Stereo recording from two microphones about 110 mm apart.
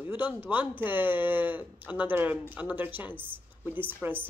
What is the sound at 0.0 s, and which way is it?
Speech, 15° right (ahead or behind).